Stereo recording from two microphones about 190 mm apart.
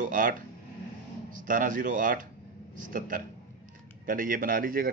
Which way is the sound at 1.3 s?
45° right (ahead or behind).